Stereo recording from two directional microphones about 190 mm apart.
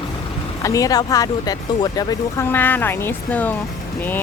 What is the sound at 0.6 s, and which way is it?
Speech, 20° left (ahead or behind).